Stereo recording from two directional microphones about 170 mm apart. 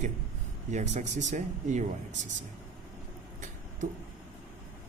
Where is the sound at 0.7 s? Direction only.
45° right (ahead or behind).